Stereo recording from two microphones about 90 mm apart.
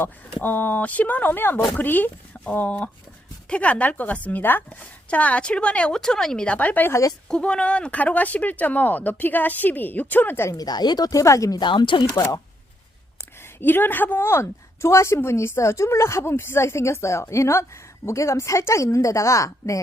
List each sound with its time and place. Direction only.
0.4 s a woman's voice: 20° left (ahead or behind)
10.5 s speech: 45° left (ahead or behind)
11.6 s speech: 60° left (ahead or behind)
13.6 s speech: 25° left (ahead or behind)